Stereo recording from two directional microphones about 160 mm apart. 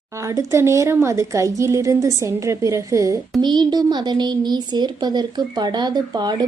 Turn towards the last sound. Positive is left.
turn(degrees=-25)  # may be behind; listen again after turning